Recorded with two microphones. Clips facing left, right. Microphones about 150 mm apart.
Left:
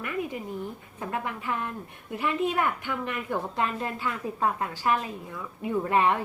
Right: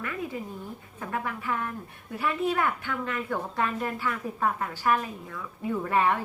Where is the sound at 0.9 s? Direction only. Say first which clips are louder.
Even; 20° left (ahead or behind).